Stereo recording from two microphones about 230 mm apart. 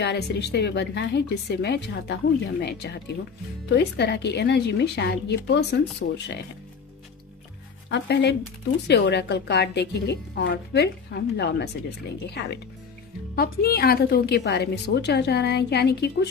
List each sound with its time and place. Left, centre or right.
0.0 s a woman's voice: left
7.9 s a woman's voice: left
13.4 s a woman's voice: left